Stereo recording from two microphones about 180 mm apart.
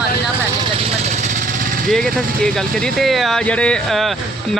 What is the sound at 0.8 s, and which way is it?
Vehicle, 35° right (ahead or behind).